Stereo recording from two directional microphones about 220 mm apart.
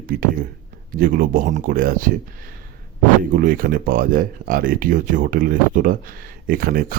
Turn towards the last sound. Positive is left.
turn(degrees=-40)  # may be behind; listen again after turning